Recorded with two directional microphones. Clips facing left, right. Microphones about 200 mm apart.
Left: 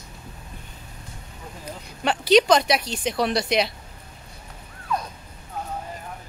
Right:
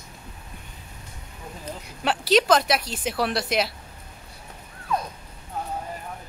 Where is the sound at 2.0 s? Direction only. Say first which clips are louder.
Left 3 dB; 5° right (ahead or behind).